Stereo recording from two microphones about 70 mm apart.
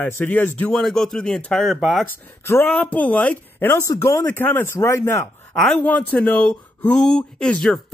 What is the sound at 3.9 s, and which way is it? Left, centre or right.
Speech, left.